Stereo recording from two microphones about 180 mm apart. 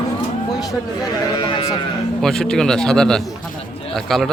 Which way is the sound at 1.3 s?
25° left (ahead or behind).